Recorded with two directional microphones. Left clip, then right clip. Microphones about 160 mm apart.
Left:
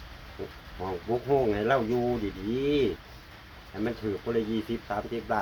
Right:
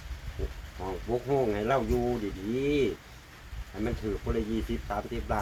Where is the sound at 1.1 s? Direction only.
Centre (ahead or behind).